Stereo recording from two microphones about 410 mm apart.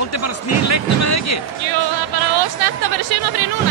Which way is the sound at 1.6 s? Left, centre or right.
Right.